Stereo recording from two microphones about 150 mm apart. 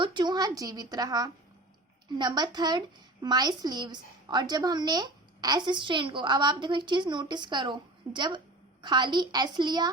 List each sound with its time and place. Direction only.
0.0 s a woman's voice: 30° right (ahead or behind)